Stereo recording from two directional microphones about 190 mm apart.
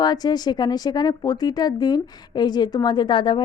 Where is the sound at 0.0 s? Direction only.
20° left (ahead or behind).